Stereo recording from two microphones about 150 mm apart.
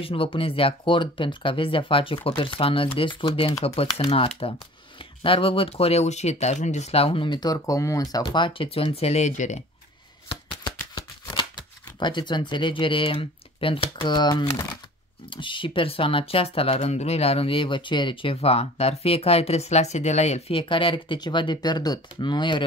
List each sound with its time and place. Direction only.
0.0 s speech: 35° left (ahead or behind)
10.2 s shuffling cards: 35° left (ahead or behind)
11.0 s speech: 25° left (ahead or behind)